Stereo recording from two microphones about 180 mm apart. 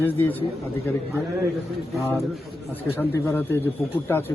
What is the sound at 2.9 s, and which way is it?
Speech, 10° left (ahead or behind).